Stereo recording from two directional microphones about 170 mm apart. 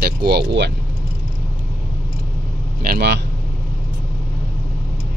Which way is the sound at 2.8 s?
65° right (ahead or behind).